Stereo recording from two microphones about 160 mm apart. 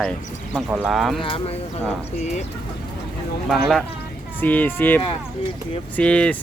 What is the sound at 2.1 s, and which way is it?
Speech, 45° left (ahead or behind).